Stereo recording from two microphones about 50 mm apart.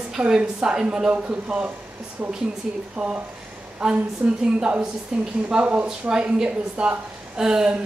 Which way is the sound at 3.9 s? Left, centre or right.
Right.